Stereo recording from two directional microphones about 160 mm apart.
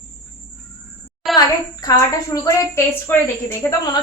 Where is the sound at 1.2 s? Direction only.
Centre (ahead or behind).